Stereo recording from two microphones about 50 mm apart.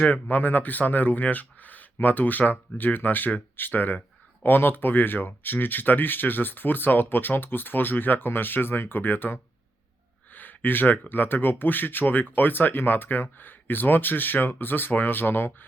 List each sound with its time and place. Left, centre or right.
0.0 s speech: left
10.3 s a sound: left
11.1 s speech: left